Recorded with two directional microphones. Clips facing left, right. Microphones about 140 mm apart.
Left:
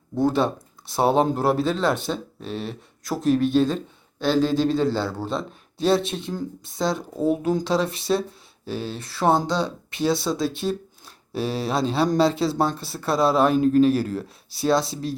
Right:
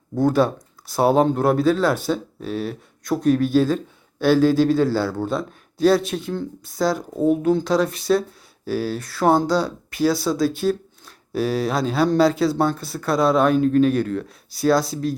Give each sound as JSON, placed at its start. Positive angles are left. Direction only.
{"t": 0.3, "sound": "speech", "side_deg": 25}
{"t": 0.9, "sound": "speech", "side_deg": 0}
{"t": 4.7, "sound": "speech", "side_deg": 20}
{"t": 4.9, "sound": "speech", "side_deg": 0}
{"t": 8.7, "sound": "speech", "side_deg": 25}
{"t": 10.2, "sound": "a sound", "side_deg": 0}
{"t": 11.3, "sound": "speech", "side_deg": 30}
{"t": 11.6, "sound": "speech", "side_deg": 0}